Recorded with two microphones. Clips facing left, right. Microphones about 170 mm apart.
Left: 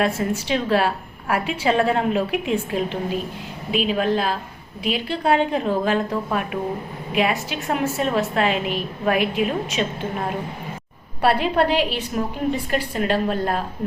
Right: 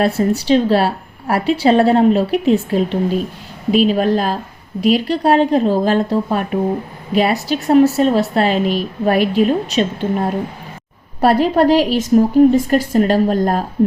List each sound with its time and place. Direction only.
0.4 s a woman's voice: 35° right (ahead or behind)